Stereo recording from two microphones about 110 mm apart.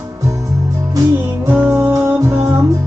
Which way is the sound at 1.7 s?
25° right (ahead or behind).